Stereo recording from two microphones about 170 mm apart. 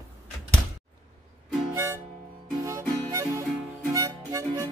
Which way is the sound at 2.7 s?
20° right (ahead or behind).